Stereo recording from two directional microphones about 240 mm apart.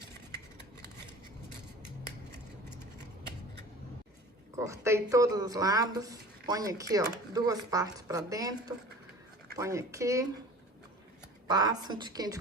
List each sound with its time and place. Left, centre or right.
4.5 s speech: centre
11.4 s speech: centre